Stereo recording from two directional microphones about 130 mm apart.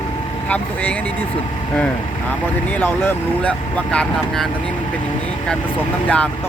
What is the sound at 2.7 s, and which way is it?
Speech, 15° left (ahead or behind).